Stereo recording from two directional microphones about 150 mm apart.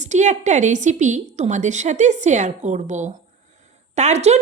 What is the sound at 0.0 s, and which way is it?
A woman's voice, 50° right (ahead or behind).